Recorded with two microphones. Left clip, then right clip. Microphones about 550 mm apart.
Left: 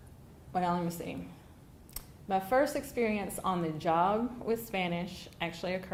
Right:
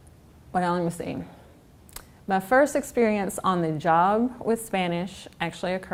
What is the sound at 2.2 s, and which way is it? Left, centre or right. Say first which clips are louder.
A woman's voice: right 8 dB; right.